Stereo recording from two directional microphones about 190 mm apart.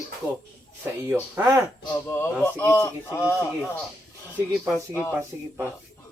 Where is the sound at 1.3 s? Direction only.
15° right (ahead or behind).